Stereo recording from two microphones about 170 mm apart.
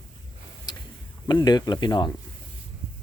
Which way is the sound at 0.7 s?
25° left (ahead or behind).